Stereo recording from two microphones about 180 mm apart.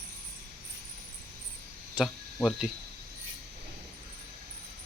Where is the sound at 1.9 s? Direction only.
Centre (ahead or behind).